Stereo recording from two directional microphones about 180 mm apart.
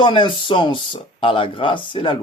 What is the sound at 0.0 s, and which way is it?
Speech, 25° left (ahead or behind).